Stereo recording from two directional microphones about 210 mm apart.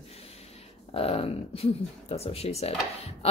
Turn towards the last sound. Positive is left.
turn(degrees=30)  # may be behind; listen again after turning